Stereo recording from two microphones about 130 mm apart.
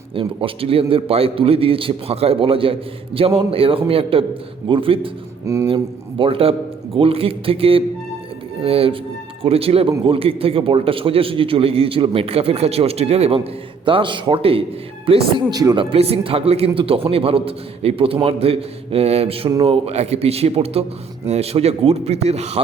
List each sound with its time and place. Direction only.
0.2 s a man's voice: 45° right (ahead or behind)
15.4 s speech: 30° right (ahead or behind)
15.8 s a man's voice: 45° right (ahead or behind)